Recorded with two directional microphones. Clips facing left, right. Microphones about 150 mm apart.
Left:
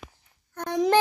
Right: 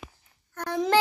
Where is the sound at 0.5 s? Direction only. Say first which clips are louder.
Left 2 dB; 20° left (ahead or behind).